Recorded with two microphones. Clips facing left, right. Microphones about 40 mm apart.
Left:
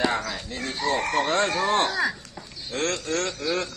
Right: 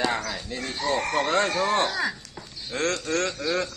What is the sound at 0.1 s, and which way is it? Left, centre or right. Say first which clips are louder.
Dog: left 1 dB; centre.